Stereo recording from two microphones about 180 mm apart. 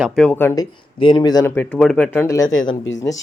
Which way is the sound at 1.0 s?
30° left (ahead or behind).